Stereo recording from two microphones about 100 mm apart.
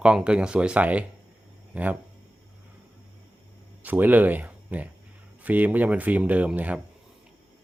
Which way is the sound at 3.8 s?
15° right (ahead or behind).